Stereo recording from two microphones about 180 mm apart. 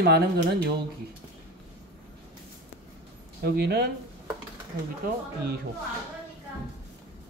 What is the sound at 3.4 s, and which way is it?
Speech, 70° right (ahead or behind).